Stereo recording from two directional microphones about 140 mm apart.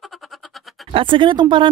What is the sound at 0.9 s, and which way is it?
Speech, 35° right (ahead or behind).